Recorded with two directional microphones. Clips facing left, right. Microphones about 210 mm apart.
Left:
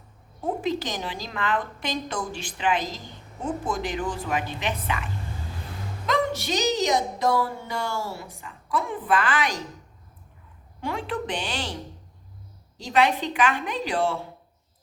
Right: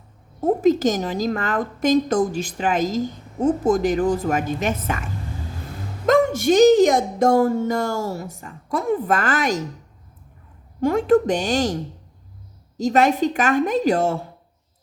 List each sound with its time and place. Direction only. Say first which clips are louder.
0.4 s a woman's voice: right 10 dB; 45° right (ahead or behind)
6.1 s a woman's voice: right 9 dB; 50° right (ahead or behind)
10.8 s a woman's voice: right 13 dB; 45° right (ahead or behind)